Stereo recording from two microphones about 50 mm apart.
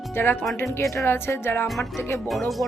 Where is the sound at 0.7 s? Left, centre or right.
Left.